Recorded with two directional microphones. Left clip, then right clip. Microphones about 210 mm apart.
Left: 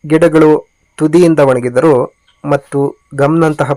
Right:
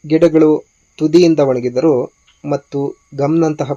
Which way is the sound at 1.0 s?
Centre (ahead or behind).